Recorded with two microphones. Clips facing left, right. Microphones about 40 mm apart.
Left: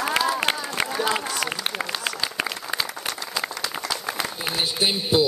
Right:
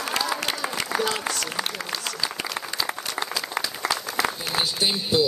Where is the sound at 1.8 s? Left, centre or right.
Left.